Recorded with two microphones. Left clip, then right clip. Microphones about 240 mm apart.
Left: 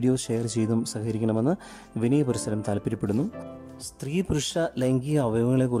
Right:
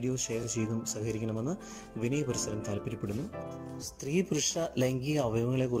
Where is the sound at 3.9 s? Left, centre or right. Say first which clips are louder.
Left 3 dB; centre.